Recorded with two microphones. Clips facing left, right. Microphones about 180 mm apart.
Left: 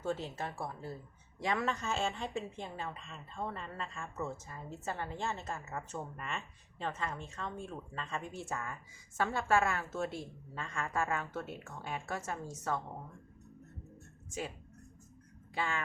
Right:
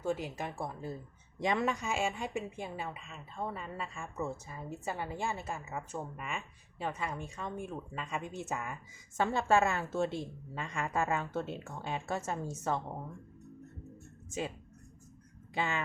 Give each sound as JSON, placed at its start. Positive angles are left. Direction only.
{"t": 0.0, "sound": "a woman's voice", "side_deg": -10}
{"t": 14.3, "sound": "speech", "side_deg": -20}
{"t": 15.5, "sound": "speech", "side_deg": -20}